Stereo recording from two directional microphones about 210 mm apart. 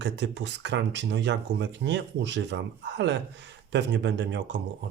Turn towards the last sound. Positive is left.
turn(degrees=-60)  # may be behind; listen again after turning